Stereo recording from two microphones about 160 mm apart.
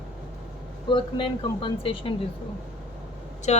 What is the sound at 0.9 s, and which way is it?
A woman's voice, 30° left (ahead or behind).